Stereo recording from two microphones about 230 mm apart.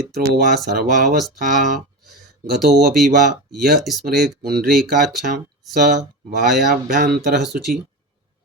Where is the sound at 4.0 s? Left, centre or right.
Right.